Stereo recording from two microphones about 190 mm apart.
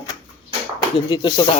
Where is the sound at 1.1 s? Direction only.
25° left (ahead or behind).